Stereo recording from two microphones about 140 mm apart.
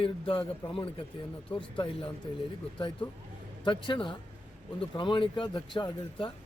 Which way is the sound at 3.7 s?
35° left (ahead or behind).